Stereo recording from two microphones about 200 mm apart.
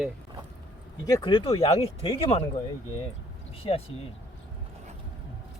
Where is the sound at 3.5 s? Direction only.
30° left (ahead or behind).